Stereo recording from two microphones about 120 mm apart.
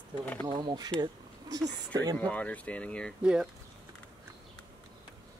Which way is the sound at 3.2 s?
5° right (ahead or behind).